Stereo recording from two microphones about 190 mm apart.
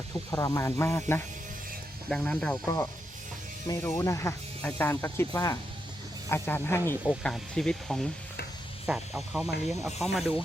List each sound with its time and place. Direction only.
0.3 s speech: 20° left (ahead or behind)
2.6 s speech: 15° left (ahead or behind); by 10.4 s centre (ahead or behind)